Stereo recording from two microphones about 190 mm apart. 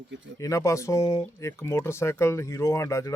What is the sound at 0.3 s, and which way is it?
Speech, 15° left (ahead or behind).